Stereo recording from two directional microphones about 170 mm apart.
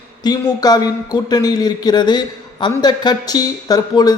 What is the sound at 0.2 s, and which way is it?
A man's voice, 25° left (ahead or behind).